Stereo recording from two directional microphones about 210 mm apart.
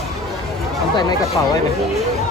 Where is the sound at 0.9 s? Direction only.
20° left (ahead or behind).